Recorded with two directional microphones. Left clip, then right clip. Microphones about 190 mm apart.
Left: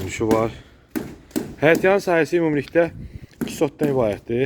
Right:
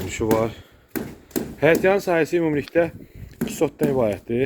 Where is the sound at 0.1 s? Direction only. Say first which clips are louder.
Left 1 dB; 15° left (ahead or behind).